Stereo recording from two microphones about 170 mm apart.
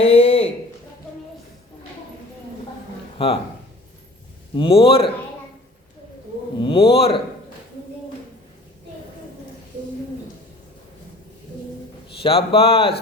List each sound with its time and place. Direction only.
0.0 s a sound: 35° left (ahead or behind)
4.5 s speech: 30° left (ahead or behind)
6.6 s speech: 30° left (ahead or behind)
12.2 s speech: 35° left (ahead or behind)